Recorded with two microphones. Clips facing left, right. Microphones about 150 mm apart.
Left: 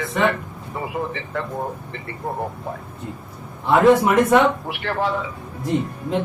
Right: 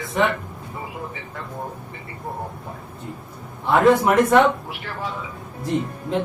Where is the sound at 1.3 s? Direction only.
75° left (ahead or behind).